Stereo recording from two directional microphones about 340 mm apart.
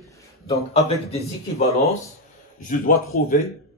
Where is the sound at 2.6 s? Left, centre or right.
Left.